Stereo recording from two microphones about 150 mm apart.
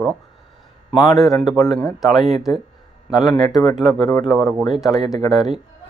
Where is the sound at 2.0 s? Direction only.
Centre (ahead or behind).